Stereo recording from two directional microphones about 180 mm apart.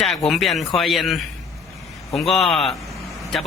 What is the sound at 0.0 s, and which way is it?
A man's voice, centre (ahead or behind).